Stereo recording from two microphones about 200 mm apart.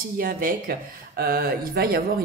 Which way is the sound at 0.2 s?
45° right (ahead or behind).